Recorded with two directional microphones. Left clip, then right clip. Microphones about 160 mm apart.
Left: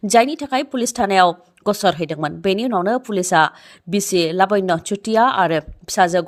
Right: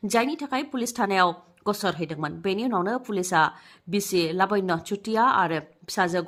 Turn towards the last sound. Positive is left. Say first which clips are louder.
# left 9 dB
turn(degrees=40)  # may be behind; listen again after turning